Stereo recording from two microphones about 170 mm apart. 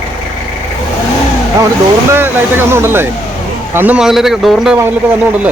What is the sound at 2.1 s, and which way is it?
Speech, 15° right (ahead or behind).